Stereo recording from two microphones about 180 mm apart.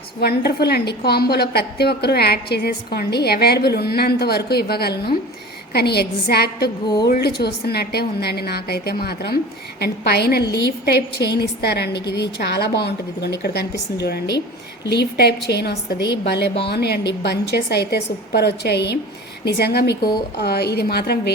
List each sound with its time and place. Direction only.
0.2 s a woman's voice: 65° left (ahead or behind)